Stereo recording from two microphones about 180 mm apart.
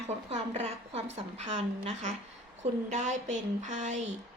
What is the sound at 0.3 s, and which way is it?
Speech, 35° right (ahead or behind).